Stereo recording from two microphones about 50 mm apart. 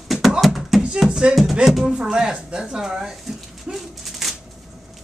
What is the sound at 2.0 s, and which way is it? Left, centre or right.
Speech, centre.